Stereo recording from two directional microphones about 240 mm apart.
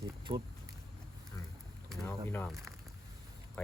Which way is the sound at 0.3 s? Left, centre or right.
Right.